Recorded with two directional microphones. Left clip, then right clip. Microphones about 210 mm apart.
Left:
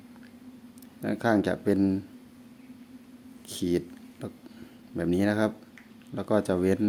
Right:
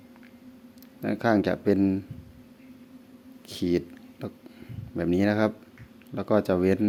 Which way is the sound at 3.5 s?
10° right (ahead or behind).